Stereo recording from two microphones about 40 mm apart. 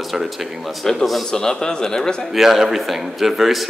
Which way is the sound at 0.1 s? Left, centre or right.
Centre.